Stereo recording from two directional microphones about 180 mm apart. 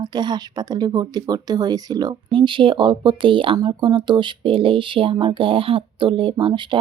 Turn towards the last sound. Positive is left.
turn(degrees=-25)  # may be behind; listen again after turning